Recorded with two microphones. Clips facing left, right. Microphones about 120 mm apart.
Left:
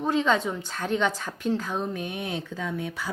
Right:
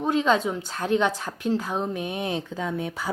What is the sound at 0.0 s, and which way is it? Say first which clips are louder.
Speech: right 2 dB; 10° right (ahead or behind).